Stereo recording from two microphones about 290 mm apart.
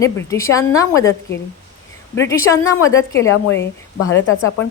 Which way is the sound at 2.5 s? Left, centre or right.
Centre.